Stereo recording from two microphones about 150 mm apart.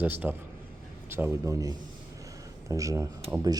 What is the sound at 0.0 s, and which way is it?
Speech, 10° right (ahead or behind).